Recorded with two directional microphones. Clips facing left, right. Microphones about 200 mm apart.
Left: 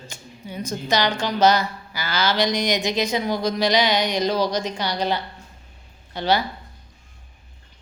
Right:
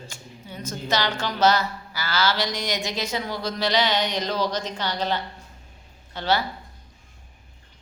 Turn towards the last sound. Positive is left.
turn(degrees=15)  # may be behind; listen again after turning